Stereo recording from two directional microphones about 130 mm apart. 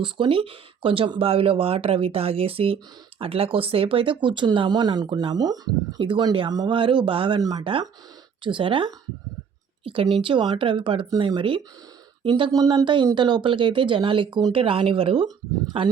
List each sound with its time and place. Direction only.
0.0 s a woman's voice: 40° right (ahead or behind)
12.5 s speech: 30° right (ahead or behind); by 15.9 s 45° right (ahead or behind)